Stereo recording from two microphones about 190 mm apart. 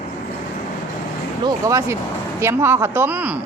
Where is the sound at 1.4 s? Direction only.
15° right (ahead or behind).